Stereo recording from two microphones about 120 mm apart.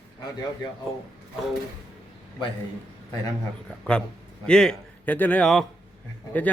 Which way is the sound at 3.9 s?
10° left (ahead or behind).